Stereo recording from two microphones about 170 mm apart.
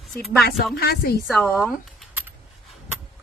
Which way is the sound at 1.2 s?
Centre (ahead or behind).